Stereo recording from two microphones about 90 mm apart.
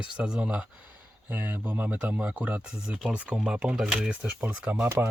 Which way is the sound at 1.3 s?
20° right (ahead or behind).